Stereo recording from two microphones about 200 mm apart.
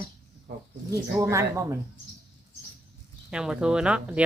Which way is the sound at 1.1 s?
10° right (ahead or behind).